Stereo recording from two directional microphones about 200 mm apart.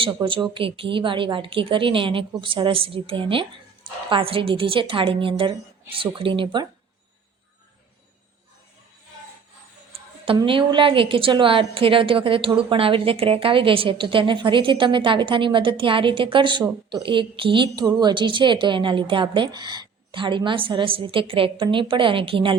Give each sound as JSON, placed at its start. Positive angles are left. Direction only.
{"t": 0.0, "sound": "a woman's voice", "side_deg": -25}
{"t": 10.2, "sound": "a woman's voice", "side_deg": -25}